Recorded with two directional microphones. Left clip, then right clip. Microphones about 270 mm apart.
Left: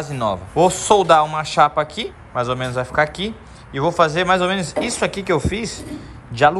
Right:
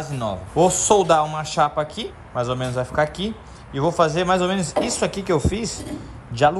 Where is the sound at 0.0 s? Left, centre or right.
Centre.